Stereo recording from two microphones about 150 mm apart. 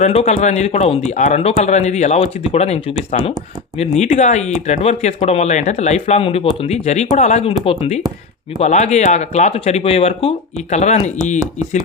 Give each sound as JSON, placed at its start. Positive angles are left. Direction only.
{"t": 0.0, "sound": "speech", "side_deg": 45}
{"t": 3.9, "sound": "speech", "side_deg": 50}
{"t": 7.6, "sound": "speech", "side_deg": 40}